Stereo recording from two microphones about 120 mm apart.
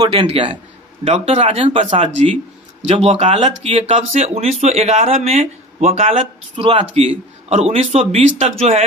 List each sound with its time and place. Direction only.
0.1 s a man's voice: 45° right (ahead or behind)
1.0 s speech: 60° right (ahead or behind)
1.9 s speech: 80° right
3.0 s speech: 60° right (ahead or behind)